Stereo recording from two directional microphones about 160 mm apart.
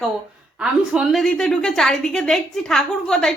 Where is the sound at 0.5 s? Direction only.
5° right (ahead or behind).